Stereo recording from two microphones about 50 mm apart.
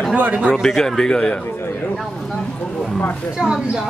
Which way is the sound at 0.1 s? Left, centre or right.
Right.